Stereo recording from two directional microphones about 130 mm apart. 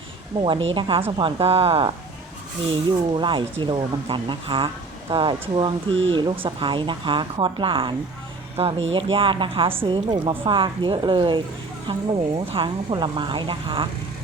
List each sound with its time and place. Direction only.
0.3 s a woman's voice: 40° right (ahead or behind)